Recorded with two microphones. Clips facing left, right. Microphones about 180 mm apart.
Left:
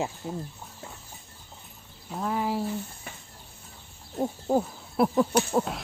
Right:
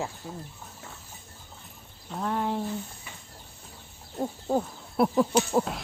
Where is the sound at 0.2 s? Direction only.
20° left (ahead or behind).